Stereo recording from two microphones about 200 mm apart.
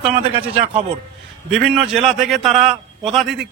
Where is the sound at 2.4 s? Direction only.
30° right (ahead or behind).